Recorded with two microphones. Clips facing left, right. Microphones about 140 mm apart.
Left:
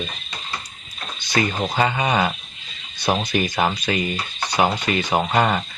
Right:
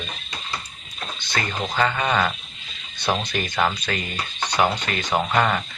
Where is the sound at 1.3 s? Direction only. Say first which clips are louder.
Left 4 dB; 15° left (ahead or behind).